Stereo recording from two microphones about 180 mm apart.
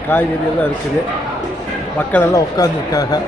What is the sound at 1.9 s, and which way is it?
Speech, 10° left (ahead or behind).